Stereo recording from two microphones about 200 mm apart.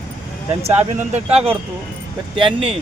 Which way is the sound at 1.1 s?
30° right (ahead or behind).